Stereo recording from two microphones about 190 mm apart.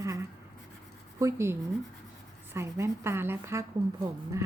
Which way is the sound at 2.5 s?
15° right (ahead or behind).